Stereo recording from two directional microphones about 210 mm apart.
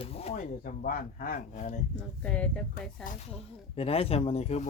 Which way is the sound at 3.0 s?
35° left (ahead or behind).